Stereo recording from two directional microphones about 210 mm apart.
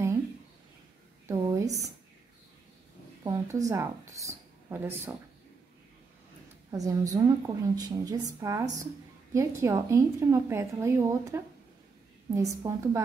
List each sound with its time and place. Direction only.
1.2 s a sound: 15° right (ahead or behind)
3.3 s speech: 15° right (ahead or behind)
6.7 s a woman's voice: 15° right (ahead or behind)